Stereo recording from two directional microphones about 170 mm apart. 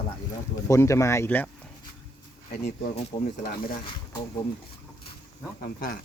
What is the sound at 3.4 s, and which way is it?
Speech, 60° left (ahead or behind).